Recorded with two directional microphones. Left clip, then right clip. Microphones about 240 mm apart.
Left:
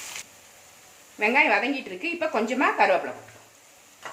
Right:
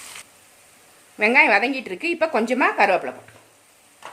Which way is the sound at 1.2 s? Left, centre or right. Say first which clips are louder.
Right 5 dB; right.